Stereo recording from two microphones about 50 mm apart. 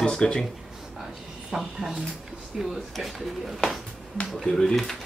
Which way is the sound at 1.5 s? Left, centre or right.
Centre.